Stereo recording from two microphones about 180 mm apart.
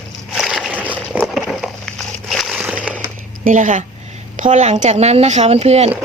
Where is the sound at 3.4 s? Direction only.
45° right (ahead or behind).